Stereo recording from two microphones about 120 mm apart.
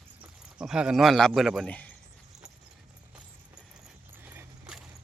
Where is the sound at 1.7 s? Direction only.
10° left (ahead or behind).